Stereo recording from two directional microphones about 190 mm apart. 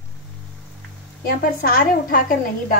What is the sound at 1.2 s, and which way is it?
A woman's voice, 50° left (ahead or behind).